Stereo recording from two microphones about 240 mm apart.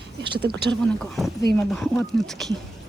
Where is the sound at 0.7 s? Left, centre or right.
Centre.